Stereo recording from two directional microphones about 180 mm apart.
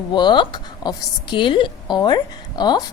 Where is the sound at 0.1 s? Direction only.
25° left (ahead or behind).